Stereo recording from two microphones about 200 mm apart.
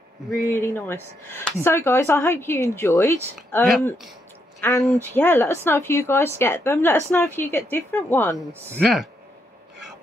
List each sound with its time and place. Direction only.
0.3 s a woman's voice: 10° left (ahead or behind)
4.6 s a woman's voice: 15° left (ahead or behind)
8.7 s speech: centre (ahead or behind)